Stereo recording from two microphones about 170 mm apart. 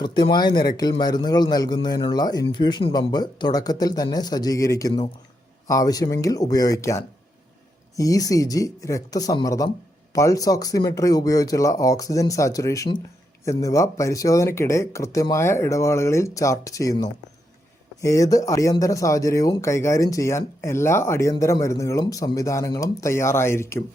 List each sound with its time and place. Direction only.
0.0 s speech: 25° left (ahead or behind)